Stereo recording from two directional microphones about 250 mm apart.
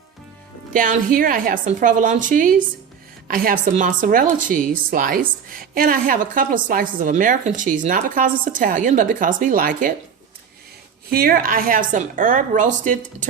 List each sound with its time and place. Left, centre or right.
0.7 s speech: right
11.1 s speech: right